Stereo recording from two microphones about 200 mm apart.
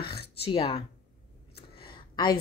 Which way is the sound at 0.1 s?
30° left (ahead or behind).